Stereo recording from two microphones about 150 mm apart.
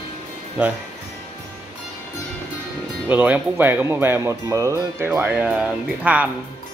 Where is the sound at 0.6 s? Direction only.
10° right (ahead or behind).